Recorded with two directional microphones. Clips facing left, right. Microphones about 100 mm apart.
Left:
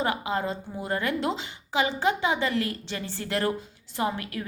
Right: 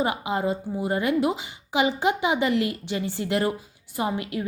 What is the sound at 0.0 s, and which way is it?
A woman's voice, 15° right (ahead or behind).